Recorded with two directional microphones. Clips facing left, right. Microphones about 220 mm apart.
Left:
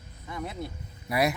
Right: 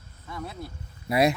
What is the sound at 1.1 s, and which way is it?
Speech, 25° right (ahead or behind).